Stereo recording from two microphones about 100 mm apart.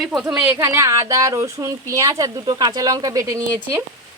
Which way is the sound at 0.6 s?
35° right (ahead or behind).